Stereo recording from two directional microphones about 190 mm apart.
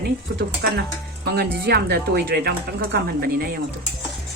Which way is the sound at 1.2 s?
55° right (ahead or behind).